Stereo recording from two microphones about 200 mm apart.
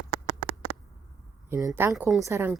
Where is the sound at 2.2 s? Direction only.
15° right (ahead or behind).